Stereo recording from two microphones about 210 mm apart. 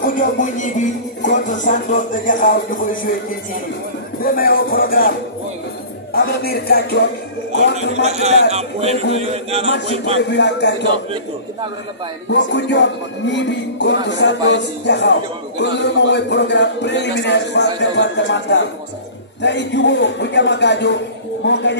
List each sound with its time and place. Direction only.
0.4 s music: 35° left (ahead or behind)
4.2 s speech: 45° left (ahead or behind)
6.1 s speech: 45° left (ahead or behind)
8.0 s a man's voice: 30° right (ahead or behind)
10.3 s a man's voice: 55° left (ahead or behind)
12.3 s a man's voice: 55° left (ahead or behind)